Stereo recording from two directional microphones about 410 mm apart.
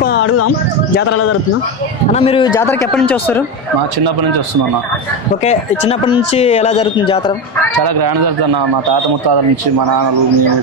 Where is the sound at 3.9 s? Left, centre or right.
Right.